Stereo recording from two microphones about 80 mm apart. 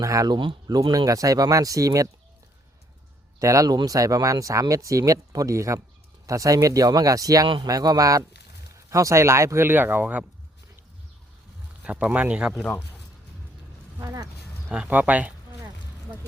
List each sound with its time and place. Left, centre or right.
0.0 s speech: right
3.4 s speech: right
7.4 s speech: right
7.7 s speech: right; by 10.2 s centre
11.8 s speech: centre
14.0 s speech: right
14.7 s speech: centre